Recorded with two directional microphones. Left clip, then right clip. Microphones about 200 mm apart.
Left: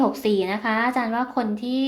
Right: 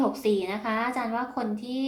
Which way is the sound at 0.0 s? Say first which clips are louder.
Left 4 dB; 35° left (ahead or behind).